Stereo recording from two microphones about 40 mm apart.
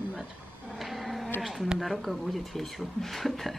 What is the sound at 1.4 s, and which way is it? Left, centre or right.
Speech, centre.